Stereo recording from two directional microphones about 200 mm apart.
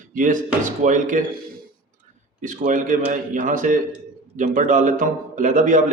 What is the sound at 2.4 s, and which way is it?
A man's voice, 40° right (ahead or behind).